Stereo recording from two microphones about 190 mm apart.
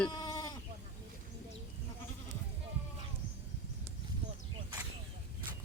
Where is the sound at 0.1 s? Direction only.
20° left (ahead or behind).